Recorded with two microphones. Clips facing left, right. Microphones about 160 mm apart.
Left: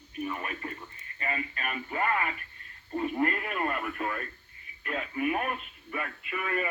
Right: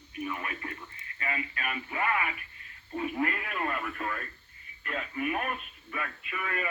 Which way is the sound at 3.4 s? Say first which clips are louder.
Left 2 dB; centre (ahead or behind).